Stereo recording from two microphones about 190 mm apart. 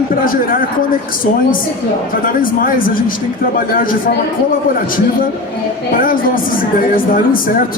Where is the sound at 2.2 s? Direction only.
50° left (ahead or behind).